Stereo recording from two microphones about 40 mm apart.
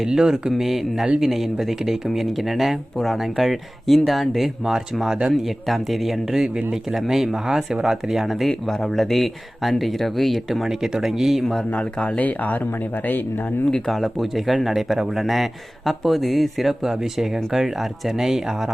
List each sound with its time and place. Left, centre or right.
0.0 s speech: centre
0.5 s speech: centre
5.4 s speech: centre
8.4 s speech: centre
11.7 s speech: left
12.2 s speech: left
13.8 s speech: centre